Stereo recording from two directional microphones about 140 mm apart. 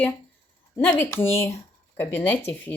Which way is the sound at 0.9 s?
15° left (ahead or behind).